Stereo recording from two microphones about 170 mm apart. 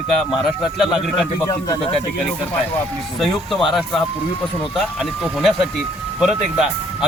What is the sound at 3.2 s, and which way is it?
Speech, centre (ahead or behind).